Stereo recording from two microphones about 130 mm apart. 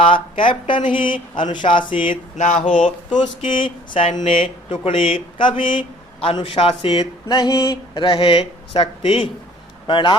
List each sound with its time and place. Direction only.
0.0 s speech: 40° left (ahead or behind)
2.4 s speech: 70° left (ahead or behind)
3.4 s speech: 40° left (ahead or behind)